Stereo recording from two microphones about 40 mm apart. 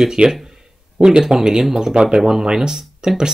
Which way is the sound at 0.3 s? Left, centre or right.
Centre.